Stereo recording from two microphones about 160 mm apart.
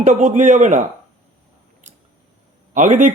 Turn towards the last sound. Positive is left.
turn(degrees=-50)  # may be behind; listen again after turning